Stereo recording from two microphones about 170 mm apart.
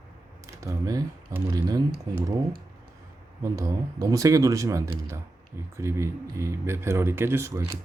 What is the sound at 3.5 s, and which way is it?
Speech, 20° right (ahead or behind).